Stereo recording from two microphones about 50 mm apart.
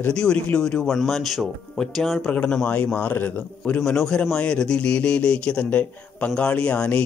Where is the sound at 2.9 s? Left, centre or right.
Left.